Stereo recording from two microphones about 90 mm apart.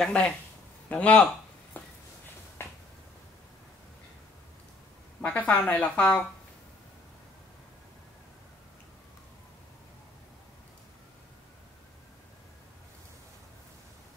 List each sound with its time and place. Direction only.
0.0 s speech: 10° left (ahead or behind)
1.8 s a sound: 20° left (ahead or behind)
5.2 s speech: 15° left (ahead or behind)